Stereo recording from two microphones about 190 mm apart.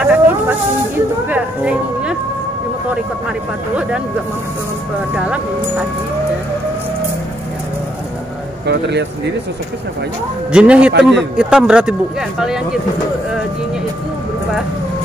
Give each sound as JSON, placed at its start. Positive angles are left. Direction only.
{"t": 0.0, "sound": "a sound", "side_deg": -10}
{"t": 5.1, "sound": "speech", "side_deg": -5}
{"t": 8.6, "sound": "speech", "side_deg": -65}
{"t": 10.5, "sound": "a man's voice", "side_deg": -5}